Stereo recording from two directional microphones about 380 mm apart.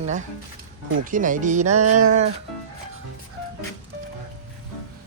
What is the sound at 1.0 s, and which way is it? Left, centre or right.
Speech, right.